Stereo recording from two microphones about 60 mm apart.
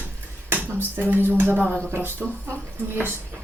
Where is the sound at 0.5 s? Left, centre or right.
Right.